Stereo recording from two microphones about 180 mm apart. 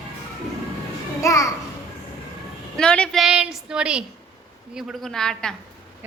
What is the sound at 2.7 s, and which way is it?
A woman's voice, 5° left (ahead or behind).